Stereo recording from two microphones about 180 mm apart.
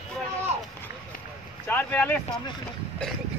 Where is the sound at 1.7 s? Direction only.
10° left (ahead or behind).